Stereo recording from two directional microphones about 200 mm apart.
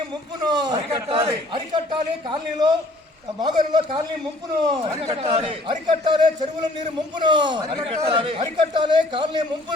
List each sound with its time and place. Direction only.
0.4 s a man's voice: 20° right (ahead or behind)